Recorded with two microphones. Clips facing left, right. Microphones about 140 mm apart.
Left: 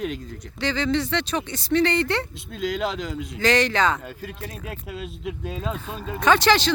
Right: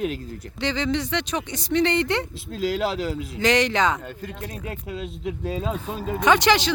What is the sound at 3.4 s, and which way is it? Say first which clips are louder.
Speech: even; 20° right (ahead or behind).